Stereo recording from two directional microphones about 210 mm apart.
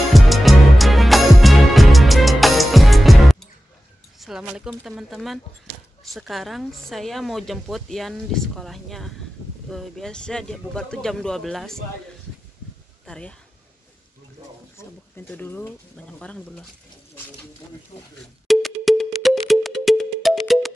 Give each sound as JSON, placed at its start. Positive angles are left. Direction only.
{"t": 0.1, "sound": "music", "side_deg": 0}
{"t": 4.2, "sound": "speech", "side_deg": -5}
{"t": 13.0, "sound": "speech", "side_deg": 5}
{"t": 14.8, "sound": "speech", "side_deg": 10}
{"t": 17.9, "sound": "speech", "side_deg": 30}
{"t": 18.5, "sound": "music", "side_deg": 0}